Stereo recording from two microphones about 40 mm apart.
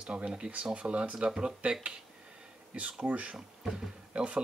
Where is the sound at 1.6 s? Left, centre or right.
Right.